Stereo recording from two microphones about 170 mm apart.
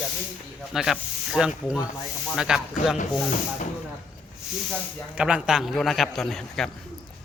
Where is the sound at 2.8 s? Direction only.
50° left (ahead or behind).